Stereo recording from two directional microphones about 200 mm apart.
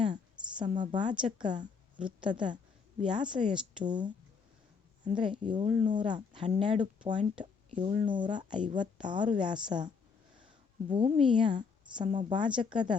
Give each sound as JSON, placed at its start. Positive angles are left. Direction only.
{"t": 0.6, "sound": "a woman's voice", "side_deg": -40}
{"t": 0.9, "sound": "a woman's voice", "side_deg": -25}
{"t": 5.1, "sound": "a woman's voice", "side_deg": -25}
{"t": 10.4, "sound": "a sound", "side_deg": -25}
{"t": 11.2, "sound": "a woman's voice", "side_deg": -25}